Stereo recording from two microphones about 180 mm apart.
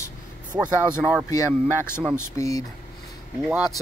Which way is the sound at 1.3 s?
15° left (ahead or behind).